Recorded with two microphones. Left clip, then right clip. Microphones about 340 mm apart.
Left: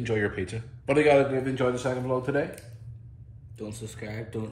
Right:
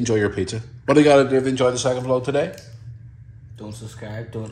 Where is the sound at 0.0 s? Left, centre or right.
Centre.